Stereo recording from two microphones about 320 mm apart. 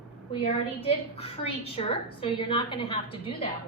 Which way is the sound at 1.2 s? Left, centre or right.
Centre.